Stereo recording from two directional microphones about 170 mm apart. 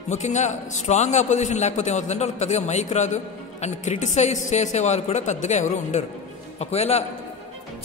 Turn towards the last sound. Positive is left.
turn(degrees=40)  # may be behind; listen again after turning